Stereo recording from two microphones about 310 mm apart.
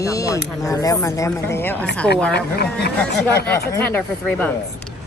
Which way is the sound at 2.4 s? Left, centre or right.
Left.